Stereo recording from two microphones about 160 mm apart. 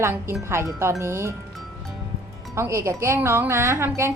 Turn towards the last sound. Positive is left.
turn(degrees=-15)  # may be behind; listen again after turning